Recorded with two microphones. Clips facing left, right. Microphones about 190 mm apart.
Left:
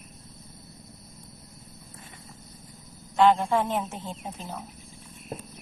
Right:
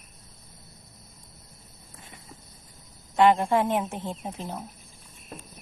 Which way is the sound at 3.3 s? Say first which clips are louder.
Right 2 dB; centre (ahead or behind).